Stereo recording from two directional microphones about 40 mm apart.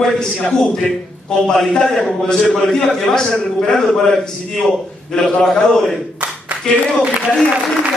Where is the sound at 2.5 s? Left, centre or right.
Centre.